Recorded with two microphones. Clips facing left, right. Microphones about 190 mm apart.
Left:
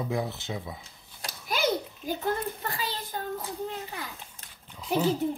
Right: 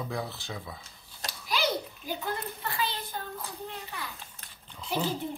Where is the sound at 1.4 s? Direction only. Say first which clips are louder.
Left 3 dB; 50° left (ahead or behind).